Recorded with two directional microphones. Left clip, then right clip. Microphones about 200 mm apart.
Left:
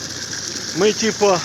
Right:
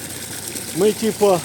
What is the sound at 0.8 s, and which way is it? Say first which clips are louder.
Speech: left 1 dB; 10° right (ahead or behind).